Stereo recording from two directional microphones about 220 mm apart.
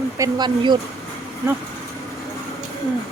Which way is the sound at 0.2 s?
20° right (ahead or behind).